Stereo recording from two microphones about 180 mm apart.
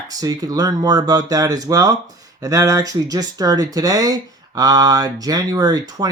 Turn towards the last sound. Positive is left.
turn(degrees=-20)  # may be behind; listen again after turning